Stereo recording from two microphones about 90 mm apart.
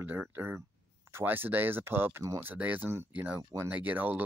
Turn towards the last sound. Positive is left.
turn(degrees=-20)  # may be behind; listen again after turning